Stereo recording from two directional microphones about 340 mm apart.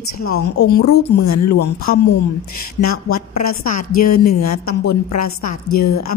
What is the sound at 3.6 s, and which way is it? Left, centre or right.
Speech, left.